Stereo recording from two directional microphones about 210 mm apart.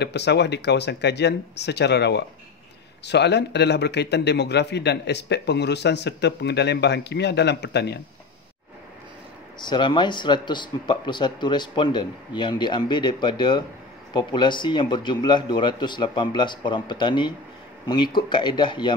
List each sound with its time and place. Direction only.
0.0 s a man's voice: 55° left (ahead or behind)
9.6 s a man's voice: 20° left (ahead or behind)